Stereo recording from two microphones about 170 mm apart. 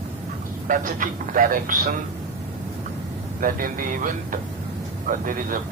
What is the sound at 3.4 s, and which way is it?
A woman's voice, 55° right (ahead or behind).